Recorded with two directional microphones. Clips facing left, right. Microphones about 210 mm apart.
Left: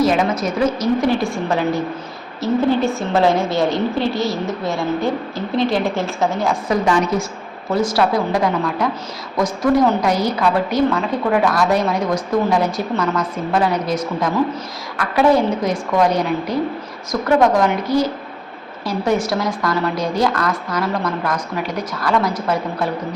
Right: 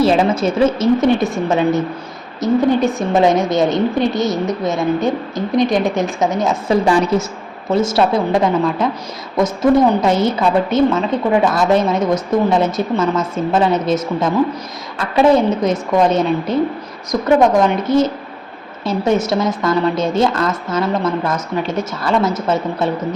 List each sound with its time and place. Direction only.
0.0 s a woman's voice: 30° right (ahead or behind)